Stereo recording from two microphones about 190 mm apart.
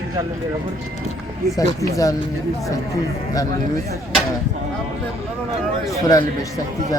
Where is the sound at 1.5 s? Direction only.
20° left (ahead or behind).